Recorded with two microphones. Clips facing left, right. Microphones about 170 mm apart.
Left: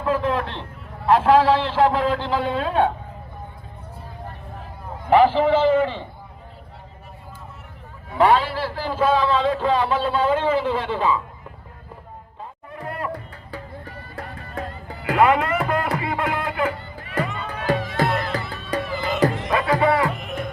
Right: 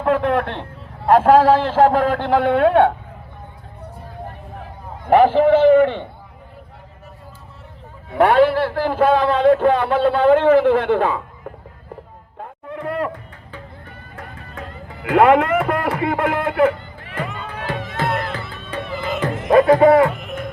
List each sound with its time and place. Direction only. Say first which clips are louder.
0.0 s a sound: right 4 dB; 65° right (ahead or behind)
1.0 s a man's voice: right 4 dB; 50° right (ahead or behind); by 2.9 s 65° right (ahead or behind)
5.0 s a man's voice: right 3 dB; 50° right (ahead or behind)
8.1 s a man's voice: right 5 dB; 55° right (ahead or behind)
12.4 s music: right 6 dB; 70° right (ahead or behind)
13.1 s music: even; 35° left (ahead or behind)
15.1 s a sound: right 5 dB; 60° right (ahead or behind)
16.0 s speech: right 5 dB; 55° right (ahead or behind)
17.2 s music: left 1 dB; 40° left (ahead or behind)
19.5 s a man's voice: right 14 dB; 50° right (ahead or behind)
20.1 s music: right 1 dB; centre (ahead or behind)